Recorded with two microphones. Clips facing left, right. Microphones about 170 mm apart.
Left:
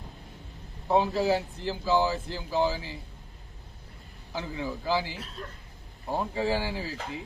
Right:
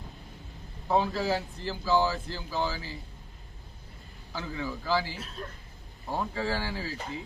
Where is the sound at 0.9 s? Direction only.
20° left (ahead or behind).